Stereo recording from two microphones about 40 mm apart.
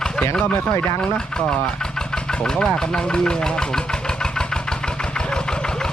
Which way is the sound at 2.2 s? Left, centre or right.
Left.